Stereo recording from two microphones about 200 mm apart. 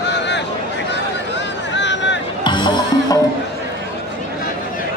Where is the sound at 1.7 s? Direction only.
60° left (ahead or behind).